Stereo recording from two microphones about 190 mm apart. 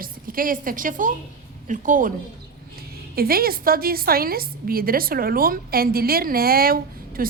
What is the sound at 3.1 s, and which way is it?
A woman's voice, 50° right (ahead or behind).